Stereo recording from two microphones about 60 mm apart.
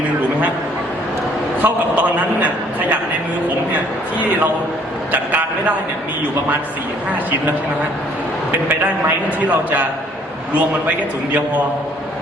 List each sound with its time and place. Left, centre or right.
1.6 s a man's voice: right
5.1 s a man's voice: right